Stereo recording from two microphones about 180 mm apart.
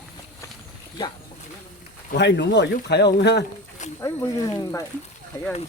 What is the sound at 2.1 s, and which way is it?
Speech, 70° left (ahead or behind).